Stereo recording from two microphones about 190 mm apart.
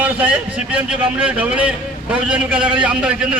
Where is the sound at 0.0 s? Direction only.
5° right (ahead or behind).